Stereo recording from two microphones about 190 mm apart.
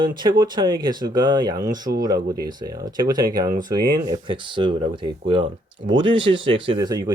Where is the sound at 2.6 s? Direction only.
20° right (ahead or behind).